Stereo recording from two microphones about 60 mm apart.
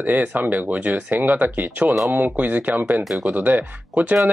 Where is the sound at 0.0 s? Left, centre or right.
Right.